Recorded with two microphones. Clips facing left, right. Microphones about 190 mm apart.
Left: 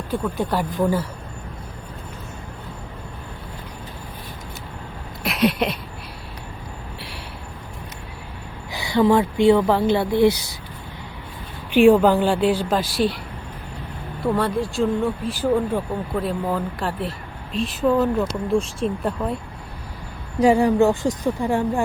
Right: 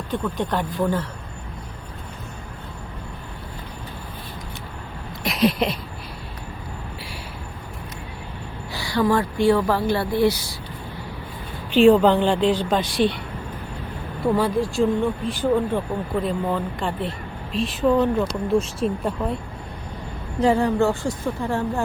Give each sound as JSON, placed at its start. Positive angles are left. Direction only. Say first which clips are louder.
{"t": 0.1, "sound": "a woman's voice", "louder": "left 1 dB", "side_deg": 10}
{"t": 5.2, "sound": "a sound", "louder": "even", "side_deg": 0}
{"t": 8.7, "sound": "speech", "louder": "left 3 dB", "side_deg": 20}
{"t": 11.7, "sound": "a woman's voice", "louder": "left 1 dB", "side_deg": 10}
{"t": 14.3, "sound": "speech", "louder": "right 2 dB", "side_deg": 0}
{"t": 20.4, "sound": "a woman's voice", "louder": "left 3 dB", "side_deg": 10}